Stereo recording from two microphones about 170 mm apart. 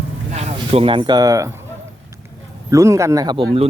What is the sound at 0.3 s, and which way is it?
Speech, 40° right (ahead or behind).